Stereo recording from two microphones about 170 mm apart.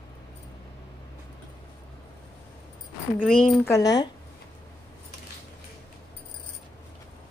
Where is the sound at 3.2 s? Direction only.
5° left (ahead or behind).